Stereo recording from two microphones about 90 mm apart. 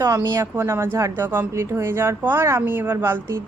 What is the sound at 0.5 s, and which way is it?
Speech, 30° right (ahead or behind).